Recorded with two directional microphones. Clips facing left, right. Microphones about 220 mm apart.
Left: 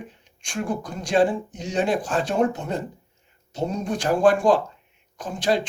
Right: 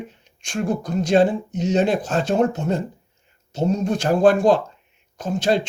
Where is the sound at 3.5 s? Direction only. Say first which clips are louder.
Right 5 dB; 25° right (ahead or behind).